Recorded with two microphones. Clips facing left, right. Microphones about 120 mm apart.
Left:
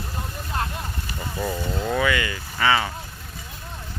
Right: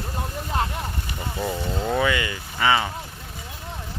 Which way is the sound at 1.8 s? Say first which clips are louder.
Even; 20° right (ahead or behind).